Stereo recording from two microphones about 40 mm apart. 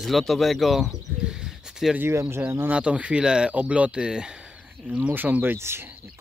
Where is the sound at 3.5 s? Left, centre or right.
Right.